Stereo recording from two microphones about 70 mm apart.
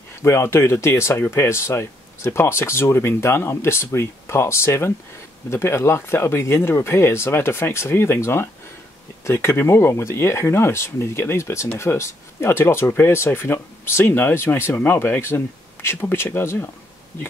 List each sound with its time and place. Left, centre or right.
0.2 s speech: left